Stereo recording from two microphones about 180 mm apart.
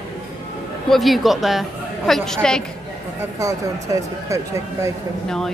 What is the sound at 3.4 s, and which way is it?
Speech, 15° right (ahead or behind).